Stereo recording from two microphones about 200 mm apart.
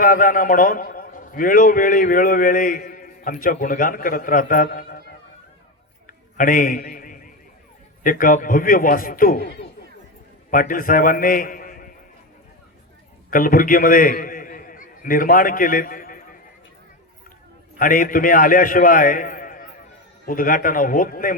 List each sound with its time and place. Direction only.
0.0 s a man's voice: 45° left (ahead or behind)
6.1 s a sound: 45° left (ahead or behind)
8.0 s a man's voice: 40° left (ahead or behind)
13.3 s a man's voice: 45° left (ahead or behind)
17.7 s a man's voice: 45° left (ahead or behind)